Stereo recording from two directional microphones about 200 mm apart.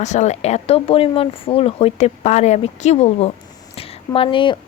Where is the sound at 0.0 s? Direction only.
35° left (ahead or behind).